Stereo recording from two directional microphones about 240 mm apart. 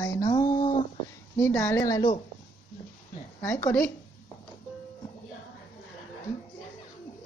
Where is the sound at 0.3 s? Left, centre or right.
Centre.